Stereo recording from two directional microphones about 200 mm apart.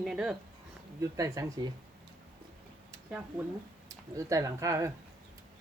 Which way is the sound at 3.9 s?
15° right (ahead or behind).